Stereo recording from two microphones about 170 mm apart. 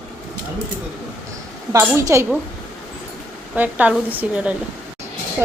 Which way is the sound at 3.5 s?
10° right (ahead or behind).